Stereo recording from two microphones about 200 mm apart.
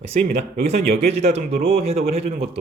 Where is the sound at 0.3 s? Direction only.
40° right (ahead or behind).